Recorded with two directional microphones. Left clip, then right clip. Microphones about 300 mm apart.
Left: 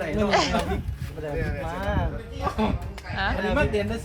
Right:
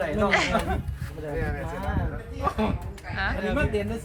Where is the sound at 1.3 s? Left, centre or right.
Centre.